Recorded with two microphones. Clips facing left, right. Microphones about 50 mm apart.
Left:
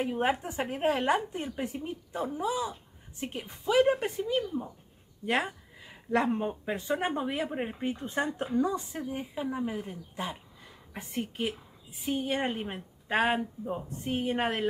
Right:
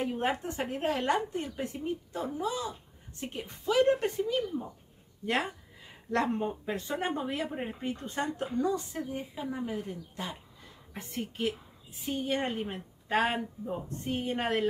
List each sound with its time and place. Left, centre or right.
0.0 s speech: centre
13.4 s speech: centre
13.8 s speech: centre